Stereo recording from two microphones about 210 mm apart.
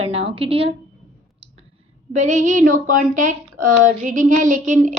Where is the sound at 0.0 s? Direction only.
30° right (ahead or behind).